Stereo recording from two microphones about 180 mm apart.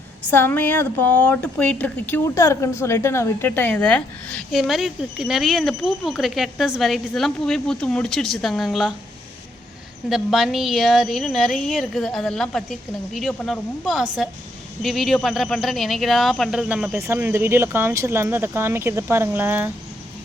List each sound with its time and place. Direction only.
0.3 s a woman's voice: 10° left (ahead or behind)
10.1 s a woman's voice: centre (ahead or behind)